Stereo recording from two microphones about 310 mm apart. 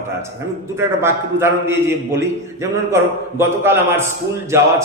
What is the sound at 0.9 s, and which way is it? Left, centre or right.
A man's voice, centre.